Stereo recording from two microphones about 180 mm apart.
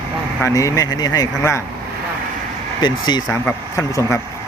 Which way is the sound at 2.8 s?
25° left (ahead or behind).